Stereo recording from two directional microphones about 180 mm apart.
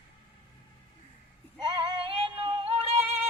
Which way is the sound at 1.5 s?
25° right (ahead or behind).